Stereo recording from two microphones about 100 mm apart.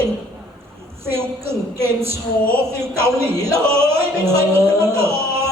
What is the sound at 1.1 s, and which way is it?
Speech, 25° right (ahead or behind).